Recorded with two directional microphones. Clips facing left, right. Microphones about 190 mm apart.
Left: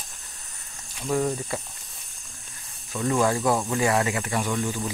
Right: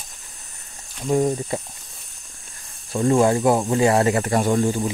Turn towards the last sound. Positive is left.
turn(degrees=-40)  # may be behind; listen again after turning